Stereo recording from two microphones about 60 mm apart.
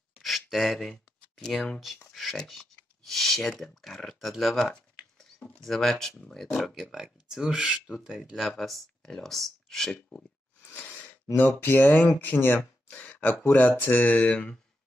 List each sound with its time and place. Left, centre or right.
0.2 s speech: centre
8.4 s speech: centre
10.6 s a sound: left
11.3 s speech: left